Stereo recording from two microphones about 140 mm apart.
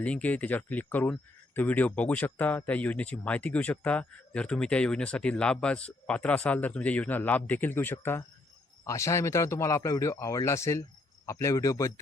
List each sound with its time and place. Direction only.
0.0 s speech: 10° left (ahead or behind)